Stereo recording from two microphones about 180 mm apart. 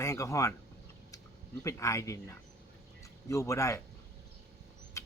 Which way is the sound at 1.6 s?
15° left (ahead or behind).